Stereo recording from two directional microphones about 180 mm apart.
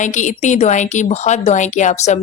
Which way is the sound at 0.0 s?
45° left (ahead or behind).